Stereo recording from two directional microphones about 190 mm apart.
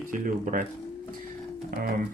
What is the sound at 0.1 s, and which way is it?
Speech, 45° right (ahead or behind).